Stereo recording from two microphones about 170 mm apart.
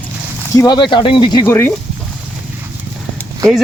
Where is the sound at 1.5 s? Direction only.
15° left (ahead or behind).